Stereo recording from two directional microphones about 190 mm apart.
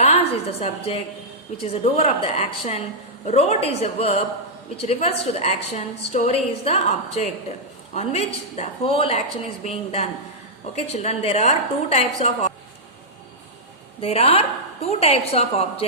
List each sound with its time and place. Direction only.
0.0 s a woman's voice: 35° left (ahead or behind)
14.0 s a woman's voice: 30° left (ahead or behind)